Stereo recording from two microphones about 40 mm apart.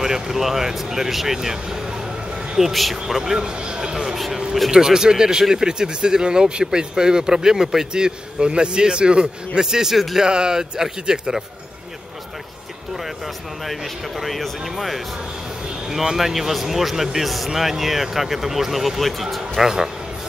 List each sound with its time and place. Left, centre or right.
0.0 s speech: centre
10.2 s speech: right
13.7 s speech: centre